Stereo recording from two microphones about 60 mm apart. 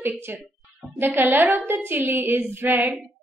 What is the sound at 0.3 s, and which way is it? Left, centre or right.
A woman's voice, right.